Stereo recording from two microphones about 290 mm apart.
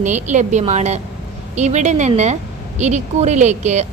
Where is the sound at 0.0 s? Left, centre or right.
Right.